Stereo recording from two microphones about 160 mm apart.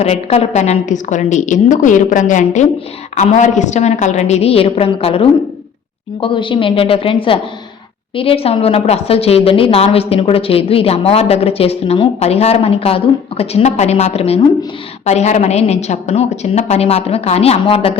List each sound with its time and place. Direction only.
0.0 s a woman's voice: 40° left (ahead or behind)